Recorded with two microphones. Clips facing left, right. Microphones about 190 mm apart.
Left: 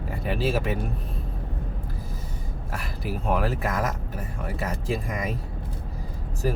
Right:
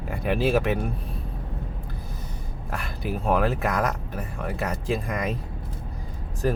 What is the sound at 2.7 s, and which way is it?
Speech, centre (ahead or behind).